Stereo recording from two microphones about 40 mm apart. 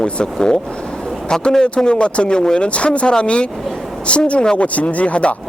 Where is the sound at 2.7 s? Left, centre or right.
Left.